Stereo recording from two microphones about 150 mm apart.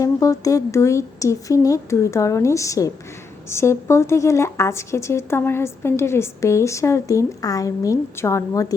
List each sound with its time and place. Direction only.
0.0 s speech: 20° left (ahead or behind)